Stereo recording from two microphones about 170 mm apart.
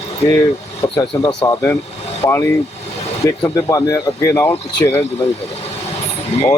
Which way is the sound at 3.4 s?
20° left (ahead or behind).